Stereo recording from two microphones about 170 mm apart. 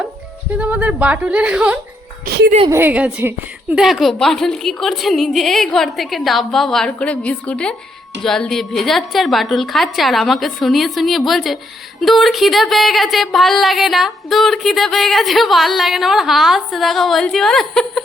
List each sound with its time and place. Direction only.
0.6 s a woman's voice: 10° right (ahead or behind)
2.2 s music: 75° right (ahead or behind)
2.6 s a woman's voice: 15° right (ahead or behind)